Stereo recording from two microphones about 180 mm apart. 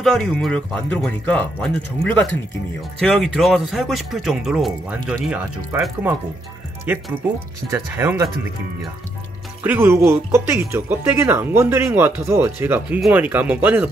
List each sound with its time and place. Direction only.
0.0 s speech: centre (ahead or behind)
3.0 s speech: centre (ahead or behind); by 8.3 s 15° right (ahead or behind)
9.6 s speech: 10° right (ahead or behind)